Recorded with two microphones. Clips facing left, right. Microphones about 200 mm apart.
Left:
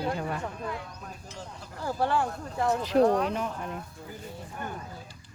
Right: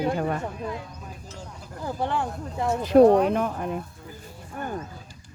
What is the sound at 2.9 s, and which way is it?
Speech, 55° right (ahead or behind).